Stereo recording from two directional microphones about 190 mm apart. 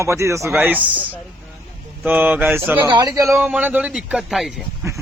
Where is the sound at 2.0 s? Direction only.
10° right (ahead or behind).